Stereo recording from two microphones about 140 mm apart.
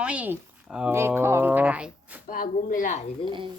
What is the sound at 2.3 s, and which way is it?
Speech, 90° left.